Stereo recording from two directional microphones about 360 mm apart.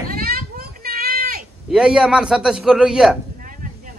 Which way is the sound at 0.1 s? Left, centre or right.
Right.